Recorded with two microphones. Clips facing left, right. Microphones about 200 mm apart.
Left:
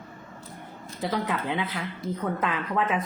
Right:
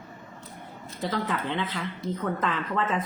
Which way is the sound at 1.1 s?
10° left (ahead or behind).